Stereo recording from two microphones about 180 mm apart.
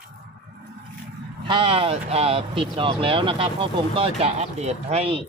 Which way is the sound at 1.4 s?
30° right (ahead or behind).